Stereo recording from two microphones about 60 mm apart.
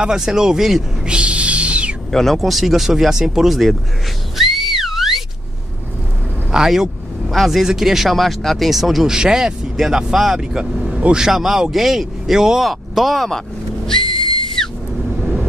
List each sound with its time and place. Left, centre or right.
0.0 s a man's voice: centre
1.0 s a sound: centre
2.0 s speech: centre
4.4 s whistling: centre
6.5 s a man's voice: centre
15.1 s vehicle: centre